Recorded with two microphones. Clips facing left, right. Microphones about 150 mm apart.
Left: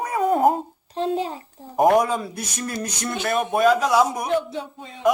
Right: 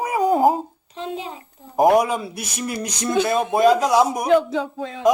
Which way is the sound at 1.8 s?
5° right (ahead or behind).